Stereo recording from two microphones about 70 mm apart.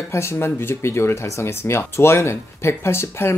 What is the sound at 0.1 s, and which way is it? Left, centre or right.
Speech, left.